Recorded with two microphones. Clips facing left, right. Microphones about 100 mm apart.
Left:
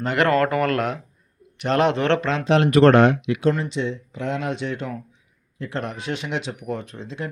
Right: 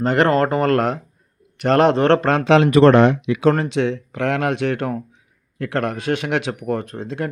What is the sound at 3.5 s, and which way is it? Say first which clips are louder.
Speech: right 6 dB; 65° right (ahead or behind).